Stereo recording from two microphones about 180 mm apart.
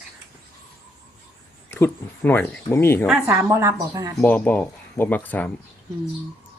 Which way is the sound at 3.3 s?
15° right (ahead or behind).